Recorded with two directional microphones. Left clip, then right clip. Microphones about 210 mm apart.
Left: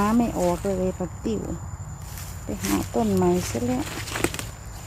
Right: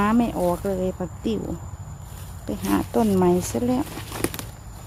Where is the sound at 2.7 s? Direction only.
20° right (ahead or behind).